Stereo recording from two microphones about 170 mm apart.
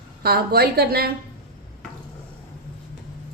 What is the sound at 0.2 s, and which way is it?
Speech, 65° right (ahead or behind).